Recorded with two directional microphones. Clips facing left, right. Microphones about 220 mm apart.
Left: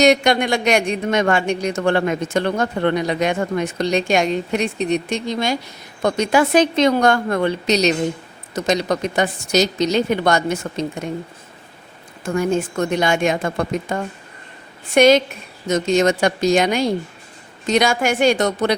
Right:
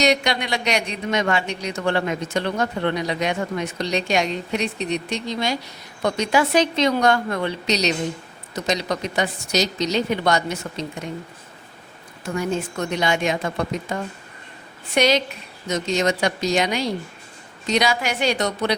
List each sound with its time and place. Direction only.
0.0 s speech: 50° left (ahead or behind)
12.2 s speech: 50° left (ahead or behind)
14.9 s speech: 50° left (ahead or behind)